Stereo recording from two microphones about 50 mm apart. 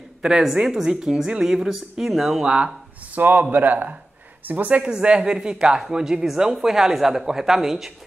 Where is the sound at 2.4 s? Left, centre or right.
Right.